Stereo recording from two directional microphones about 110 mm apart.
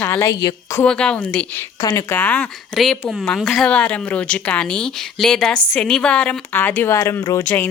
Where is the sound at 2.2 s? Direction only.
15° left (ahead or behind).